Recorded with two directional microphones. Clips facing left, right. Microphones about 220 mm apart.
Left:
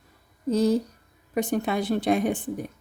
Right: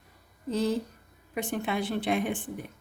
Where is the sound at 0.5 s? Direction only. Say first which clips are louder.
Left 6 dB; 40° left (ahead or behind).